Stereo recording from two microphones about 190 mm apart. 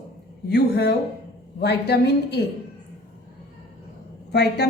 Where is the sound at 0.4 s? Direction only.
60° left (ahead or behind).